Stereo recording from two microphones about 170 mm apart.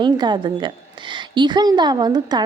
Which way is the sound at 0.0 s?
25° right (ahead or behind).